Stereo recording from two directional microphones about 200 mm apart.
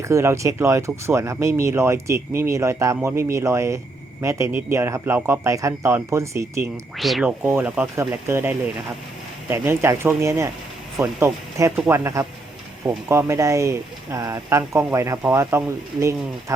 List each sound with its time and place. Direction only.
0.0 s speech: 15° right (ahead or behind)
6.9 s speech: centre (ahead or behind)